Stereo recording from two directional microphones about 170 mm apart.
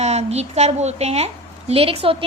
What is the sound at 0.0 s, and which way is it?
A woman's voice, 40° right (ahead or behind).